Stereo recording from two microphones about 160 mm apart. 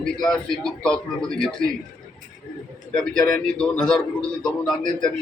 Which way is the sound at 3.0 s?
5° left (ahead or behind).